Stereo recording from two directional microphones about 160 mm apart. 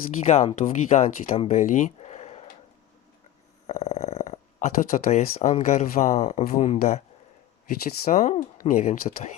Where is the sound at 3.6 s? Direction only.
45° left (ahead or behind).